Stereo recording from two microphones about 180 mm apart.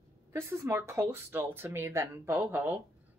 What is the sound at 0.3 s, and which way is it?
Speech, 15° right (ahead or behind).